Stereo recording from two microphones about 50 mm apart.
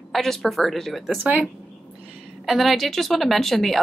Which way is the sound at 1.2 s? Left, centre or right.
Right.